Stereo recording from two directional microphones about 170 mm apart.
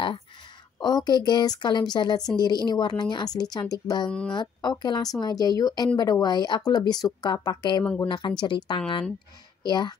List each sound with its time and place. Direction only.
0.7 s speech: 25° left (ahead or behind)
7.8 s speech: 5° left (ahead or behind)
8.1 s speech: 25° left (ahead or behind)